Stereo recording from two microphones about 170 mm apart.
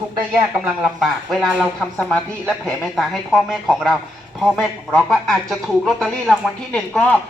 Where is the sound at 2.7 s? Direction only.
Centre (ahead or behind).